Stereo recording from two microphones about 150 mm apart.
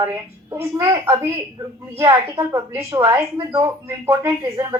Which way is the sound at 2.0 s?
20° right (ahead or behind).